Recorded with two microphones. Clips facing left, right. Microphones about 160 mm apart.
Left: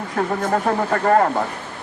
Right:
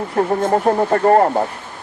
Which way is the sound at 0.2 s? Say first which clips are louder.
Right 4 dB; 30° right (ahead or behind).